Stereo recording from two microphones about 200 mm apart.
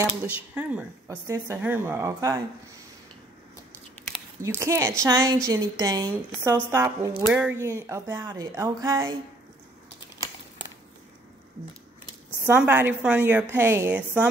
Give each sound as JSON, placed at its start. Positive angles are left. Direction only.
{"t": 0.6, "sound": "a woman's voice", "side_deg": -5}
{"t": 4.4, "sound": "a woman's voice", "side_deg": -15}
{"t": 7.2, "sound": "a woman's voice", "side_deg": -5}
{"t": 12.4, "sound": "a woman's voice", "side_deg": -10}